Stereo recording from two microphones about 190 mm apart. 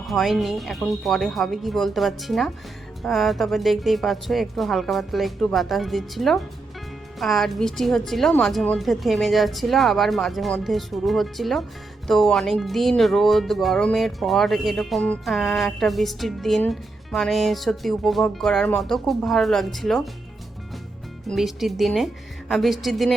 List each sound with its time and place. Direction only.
0.1 s speech: centre (ahead or behind)
21.2 s speech: centre (ahead or behind)